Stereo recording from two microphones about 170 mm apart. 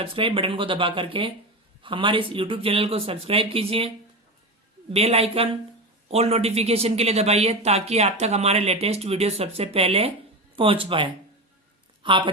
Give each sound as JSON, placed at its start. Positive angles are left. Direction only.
{"t": 0.0, "sound": "a woman's voice", "side_deg": -30}